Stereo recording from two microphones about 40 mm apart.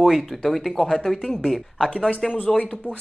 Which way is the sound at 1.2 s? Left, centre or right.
Centre.